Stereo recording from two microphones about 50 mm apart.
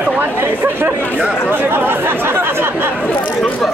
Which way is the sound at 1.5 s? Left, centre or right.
Right.